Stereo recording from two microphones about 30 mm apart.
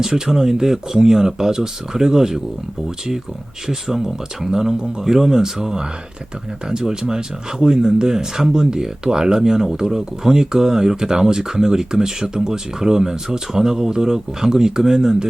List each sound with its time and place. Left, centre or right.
0.0 s speech: centre
3.7 s speech: centre